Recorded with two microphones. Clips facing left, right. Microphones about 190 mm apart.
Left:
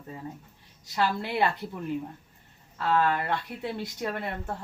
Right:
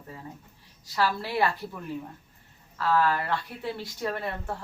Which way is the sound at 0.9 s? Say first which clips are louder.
Even; 20° left (ahead or behind).